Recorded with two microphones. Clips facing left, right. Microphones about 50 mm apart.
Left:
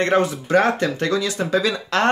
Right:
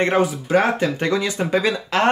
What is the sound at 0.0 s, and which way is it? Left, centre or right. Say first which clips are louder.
Speech: even; centre.